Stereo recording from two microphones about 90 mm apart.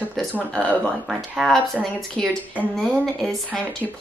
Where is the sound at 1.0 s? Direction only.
Centre (ahead or behind).